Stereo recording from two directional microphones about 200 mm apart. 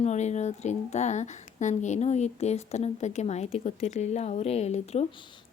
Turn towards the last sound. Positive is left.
turn(degrees=35)  # may be behind; listen again after turning